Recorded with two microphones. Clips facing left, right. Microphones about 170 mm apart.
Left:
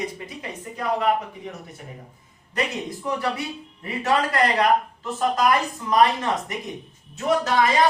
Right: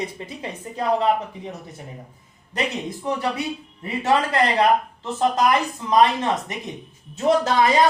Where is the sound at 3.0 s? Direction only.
20° right (ahead or behind).